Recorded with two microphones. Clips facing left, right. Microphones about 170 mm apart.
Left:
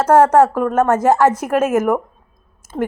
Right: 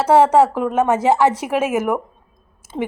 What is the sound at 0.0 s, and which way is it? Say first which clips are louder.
A woman's voice: left 1 dB; 10° right (ahead or behind).